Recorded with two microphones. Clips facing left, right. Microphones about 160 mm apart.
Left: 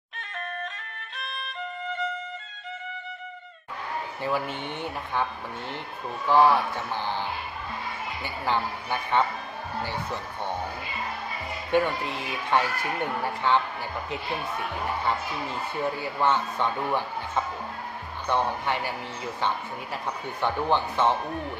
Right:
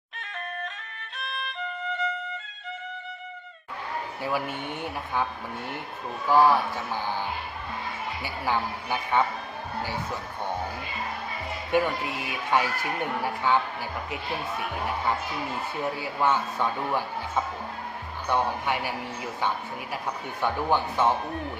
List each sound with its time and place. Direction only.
0.1 s music: centre (ahead or behind)
4.2 s speech: 5° right (ahead or behind)
6.2 s speech: 5° right (ahead or behind)
8.2 s speech: 10° right (ahead or behind)
11.7 s speech: 5° right (ahead or behind)
14.6 s speech: 10° right (ahead or behind)